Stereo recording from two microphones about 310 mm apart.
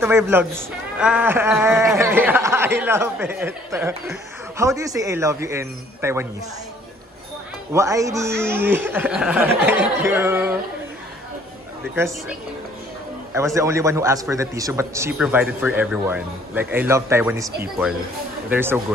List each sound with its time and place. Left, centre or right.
0.0 s speech: centre
7.7 s speech: centre
11.9 s speech: centre